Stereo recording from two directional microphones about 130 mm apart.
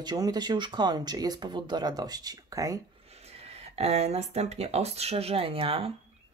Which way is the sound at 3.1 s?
50° right (ahead or behind).